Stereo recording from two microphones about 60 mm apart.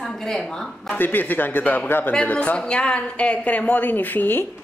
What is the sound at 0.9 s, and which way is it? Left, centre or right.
Speech, left.